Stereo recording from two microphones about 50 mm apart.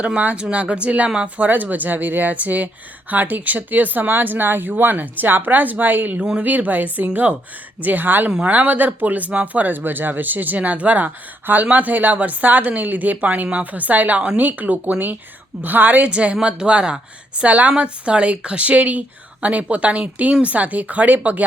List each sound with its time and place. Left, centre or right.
0.0 s a woman's voice: right
1.5 s speech: right
6.1 s speech: right
16.0 s a woman's voice: right